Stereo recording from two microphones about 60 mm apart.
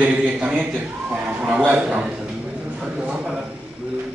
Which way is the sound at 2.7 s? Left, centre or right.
Centre.